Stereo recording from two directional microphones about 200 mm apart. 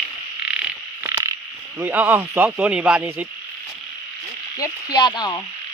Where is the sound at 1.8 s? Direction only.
10° right (ahead or behind).